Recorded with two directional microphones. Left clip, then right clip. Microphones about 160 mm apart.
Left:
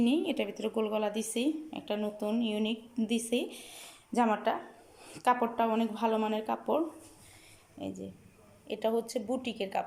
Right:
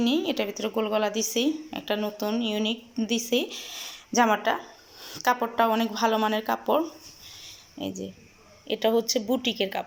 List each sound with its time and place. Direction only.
0.0 s a woman's voice: 5° left (ahead or behind)
7.4 s a sound: centre (ahead or behind)
8.6 s speech: centre (ahead or behind)